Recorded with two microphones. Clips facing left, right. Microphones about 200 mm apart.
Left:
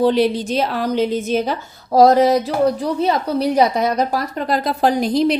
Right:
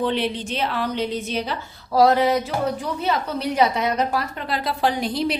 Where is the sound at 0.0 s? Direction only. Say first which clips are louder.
Left 8 dB; 40° left (ahead or behind).